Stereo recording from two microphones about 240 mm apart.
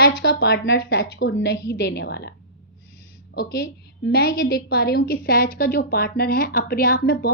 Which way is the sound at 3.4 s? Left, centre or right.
Left.